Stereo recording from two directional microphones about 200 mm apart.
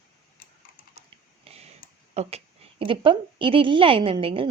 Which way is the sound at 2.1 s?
30° right (ahead or behind).